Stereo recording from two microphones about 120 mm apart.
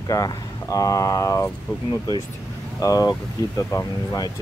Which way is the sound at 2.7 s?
30° left (ahead or behind).